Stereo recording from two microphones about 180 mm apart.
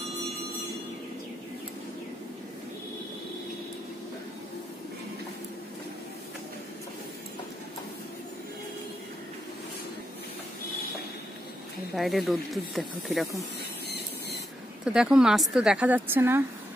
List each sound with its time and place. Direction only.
11.9 s a woman's voice: centre (ahead or behind)
13.8 s a sound: 65° left (ahead or behind)
14.9 s a woman's voice: 5° right (ahead or behind)